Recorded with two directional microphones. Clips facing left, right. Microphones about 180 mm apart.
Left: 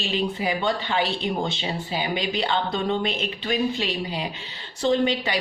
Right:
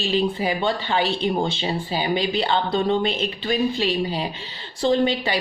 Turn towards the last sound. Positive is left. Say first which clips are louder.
# right 2 dB
turn(degrees=-30)  # may be behind; listen again after turning